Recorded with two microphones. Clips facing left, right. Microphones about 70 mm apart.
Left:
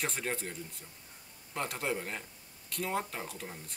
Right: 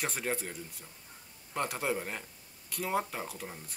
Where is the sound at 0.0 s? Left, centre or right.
Centre.